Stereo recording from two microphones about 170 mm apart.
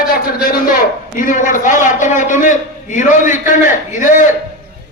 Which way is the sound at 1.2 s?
50° left (ahead or behind).